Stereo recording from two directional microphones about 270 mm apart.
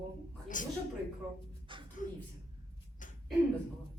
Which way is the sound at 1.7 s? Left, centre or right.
Centre.